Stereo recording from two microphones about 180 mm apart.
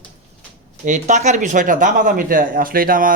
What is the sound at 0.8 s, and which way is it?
Speech, 40° right (ahead or behind).